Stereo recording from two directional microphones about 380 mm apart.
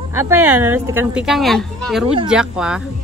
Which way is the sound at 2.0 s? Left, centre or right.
Centre.